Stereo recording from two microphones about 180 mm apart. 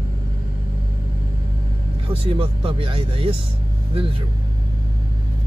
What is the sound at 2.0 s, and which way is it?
Speech, 30° right (ahead or behind).